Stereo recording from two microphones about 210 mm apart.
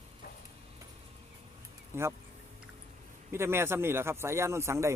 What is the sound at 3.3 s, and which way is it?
Speech, 10° right (ahead or behind).